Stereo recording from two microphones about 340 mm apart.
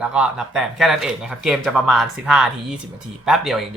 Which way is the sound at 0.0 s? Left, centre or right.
Centre.